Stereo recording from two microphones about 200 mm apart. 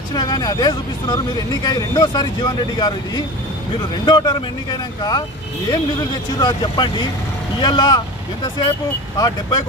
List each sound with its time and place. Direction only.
0.1 s speech: 20° left (ahead or behind)
6.4 s speech: 20° left (ahead or behind)
9.1 s speech: 20° left (ahead or behind)